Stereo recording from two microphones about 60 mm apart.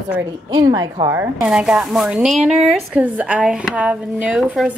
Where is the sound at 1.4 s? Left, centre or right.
Centre.